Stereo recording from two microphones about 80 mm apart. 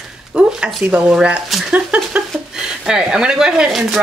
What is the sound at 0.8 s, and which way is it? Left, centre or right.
Speech, centre.